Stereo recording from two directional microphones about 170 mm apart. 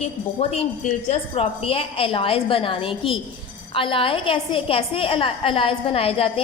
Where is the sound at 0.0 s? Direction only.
40° left (ahead or behind).